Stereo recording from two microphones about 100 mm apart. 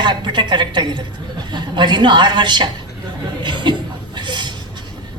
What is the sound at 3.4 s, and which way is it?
Chuckle, 50° right (ahead or behind).